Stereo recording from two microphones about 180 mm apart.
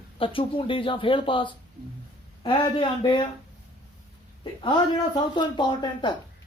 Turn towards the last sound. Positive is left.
turn(degrees=25)  # may be behind; listen again after turning